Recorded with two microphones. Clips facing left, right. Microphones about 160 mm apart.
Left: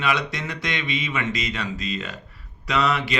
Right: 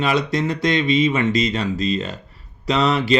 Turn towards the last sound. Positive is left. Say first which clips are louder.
# right 4 dB
turn(degrees=-30)  # may be behind; listen again after turning